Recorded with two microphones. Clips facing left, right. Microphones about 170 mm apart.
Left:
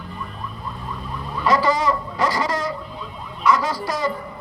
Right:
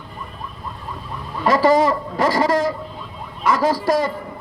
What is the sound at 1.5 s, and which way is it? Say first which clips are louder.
A man's voice: right 4 dB; 50° right (ahead or behind).